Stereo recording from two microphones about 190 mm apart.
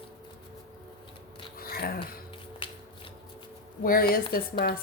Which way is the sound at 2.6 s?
30° left (ahead or behind).